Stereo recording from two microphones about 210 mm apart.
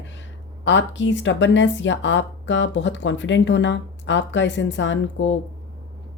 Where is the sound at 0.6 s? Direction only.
60° left (ahead or behind).